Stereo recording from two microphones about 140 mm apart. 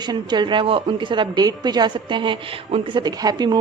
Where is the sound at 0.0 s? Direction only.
30° right (ahead or behind).